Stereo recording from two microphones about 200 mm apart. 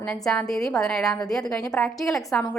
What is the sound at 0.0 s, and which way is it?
A woman's voice, 5° left (ahead or behind).